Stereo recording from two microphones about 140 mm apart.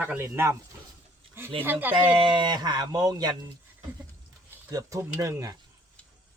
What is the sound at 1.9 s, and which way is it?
Speech, 35° right (ahead or behind).